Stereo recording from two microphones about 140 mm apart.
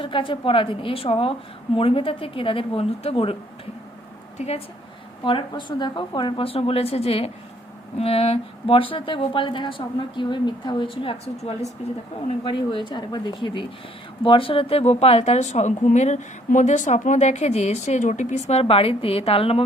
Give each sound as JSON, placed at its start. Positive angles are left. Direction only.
{"t": 0.0, "sound": "a woman's voice", "side_deg": 40}
{"t": 4.4, "sound": "a woman's voice", "side_deg": 45}
{"t": 5.2, "sound": "a woman's voice", "side_deg": 35}
{"t": 12.4, "sound": "a woman's voice", "side_deg": 35}